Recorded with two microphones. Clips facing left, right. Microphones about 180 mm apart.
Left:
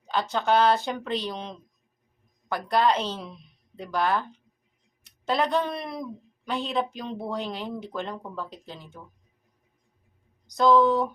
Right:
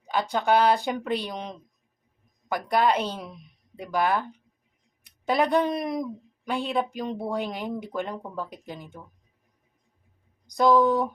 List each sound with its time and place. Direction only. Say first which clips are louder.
0.1 s speech: right 1 dB; 10° right (ahead or behind)
10.4 s speech: even; 15° right (ahead or behind)